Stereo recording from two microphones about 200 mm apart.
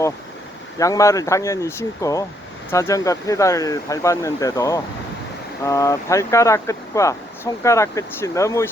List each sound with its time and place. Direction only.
0.8 s speech: 15° left (ahead or behind)